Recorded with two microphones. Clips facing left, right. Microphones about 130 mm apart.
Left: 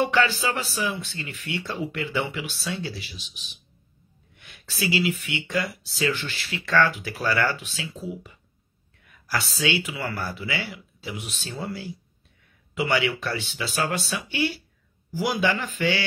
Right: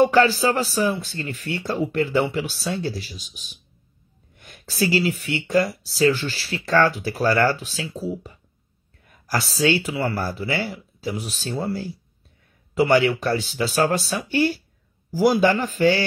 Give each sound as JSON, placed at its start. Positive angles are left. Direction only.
{"t": 0.0, "sound": "speech", "side_deg": -40}